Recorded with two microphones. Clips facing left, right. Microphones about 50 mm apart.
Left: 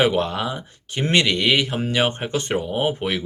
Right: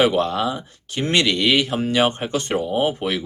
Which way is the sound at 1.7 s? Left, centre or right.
Centre.